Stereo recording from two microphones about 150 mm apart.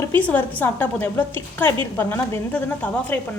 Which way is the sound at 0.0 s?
10° left (ahead or behind).